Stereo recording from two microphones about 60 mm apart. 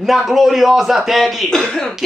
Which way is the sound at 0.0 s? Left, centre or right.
Centre.